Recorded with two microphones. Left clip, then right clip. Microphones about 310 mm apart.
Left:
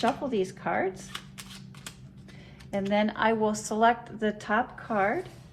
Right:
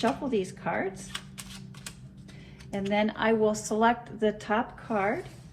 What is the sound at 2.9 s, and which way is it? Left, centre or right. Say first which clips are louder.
A woman's voice: even; left.